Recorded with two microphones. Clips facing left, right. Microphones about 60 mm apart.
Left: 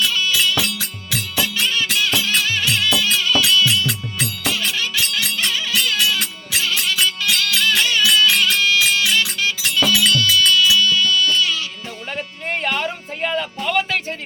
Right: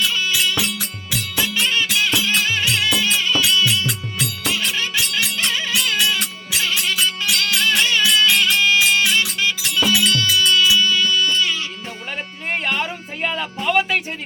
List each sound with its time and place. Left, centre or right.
0.1 s music: right
12.5 s music: centre